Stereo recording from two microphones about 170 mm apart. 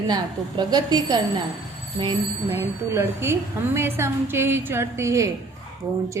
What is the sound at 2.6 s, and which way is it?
A woman's voice, 15° right (ahead or behind).